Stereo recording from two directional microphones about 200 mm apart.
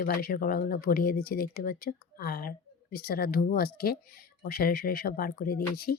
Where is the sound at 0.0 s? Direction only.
45° left (ahead or behind).